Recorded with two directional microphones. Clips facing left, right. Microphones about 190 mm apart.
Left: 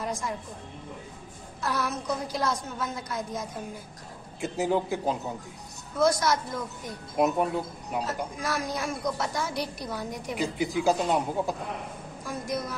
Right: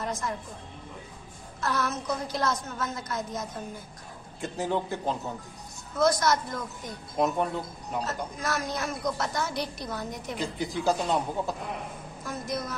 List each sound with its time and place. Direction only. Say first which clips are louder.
0.0 s a woman's voice: even; 10° left (ahead or behind)
1.6 s speech: even; 10° left (ahead or behind)